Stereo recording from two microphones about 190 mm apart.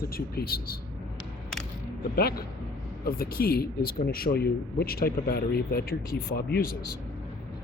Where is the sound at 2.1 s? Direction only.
55° left (ahead or behind).